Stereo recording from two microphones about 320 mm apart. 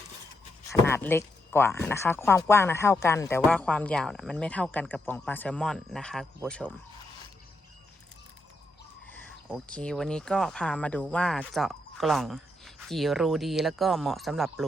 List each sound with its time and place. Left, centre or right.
0.7 s speech: centre
9.0 s speech: centre